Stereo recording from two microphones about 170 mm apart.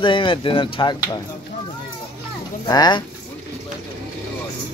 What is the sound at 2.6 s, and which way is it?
Speech, 25° left (ahead or behind).